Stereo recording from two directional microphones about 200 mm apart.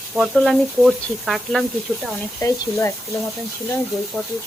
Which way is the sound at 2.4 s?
15° left (ahead or behind).